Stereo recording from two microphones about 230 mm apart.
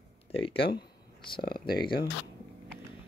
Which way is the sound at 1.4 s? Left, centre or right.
Left.